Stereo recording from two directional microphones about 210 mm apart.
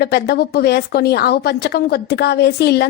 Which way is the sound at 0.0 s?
50° left (ahead or behind).